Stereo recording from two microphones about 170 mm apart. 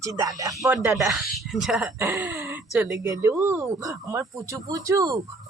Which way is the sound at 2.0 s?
15° right (ahead or behind).